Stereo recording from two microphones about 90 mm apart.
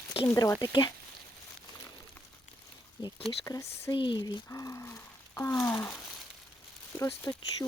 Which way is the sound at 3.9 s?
60° left (ahead or behind).